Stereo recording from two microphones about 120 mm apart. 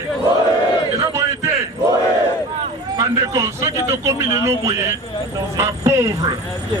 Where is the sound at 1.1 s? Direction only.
20° right (ahead or behind).